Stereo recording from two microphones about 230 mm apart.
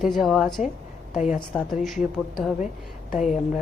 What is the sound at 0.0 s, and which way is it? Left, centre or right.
Speech, centre.